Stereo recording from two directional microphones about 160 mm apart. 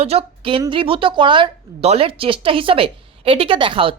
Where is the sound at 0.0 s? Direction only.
40° right (ahead or behind).